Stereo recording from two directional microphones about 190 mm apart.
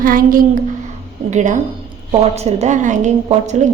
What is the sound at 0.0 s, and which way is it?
A woman's voice, 45° right (ahead or behind).